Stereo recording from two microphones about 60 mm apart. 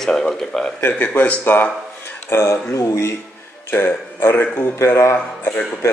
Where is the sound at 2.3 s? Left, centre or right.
Left.